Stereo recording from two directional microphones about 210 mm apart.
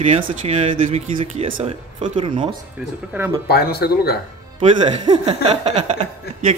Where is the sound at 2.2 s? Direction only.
25° right (ahead or behind).